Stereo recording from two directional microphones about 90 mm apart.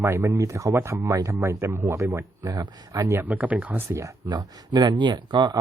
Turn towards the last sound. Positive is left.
turn(degrees=-55)  # may be behind; listen again after turning